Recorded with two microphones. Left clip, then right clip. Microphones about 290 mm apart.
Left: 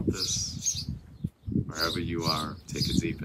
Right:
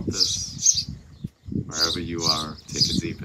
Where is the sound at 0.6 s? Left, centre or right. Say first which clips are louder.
Right 15 dB; right.